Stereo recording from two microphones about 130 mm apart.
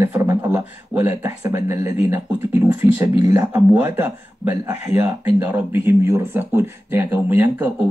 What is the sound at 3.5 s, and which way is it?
Speech, 15° right (ahead or behind).